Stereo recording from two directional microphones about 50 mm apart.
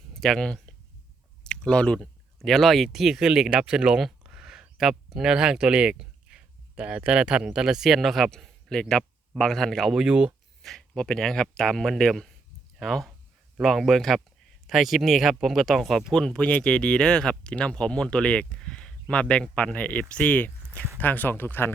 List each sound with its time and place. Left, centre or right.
0.1 s speech: centre
2.4 s speech: centre
4.0 s a sound: centre
4.8 s speech: centre
8.3 s a sound: centre
9.4 s speech: centre
10.1 s speech: right
10.6 s speech: centre
16.1 s speech: centre; by 21.7 s left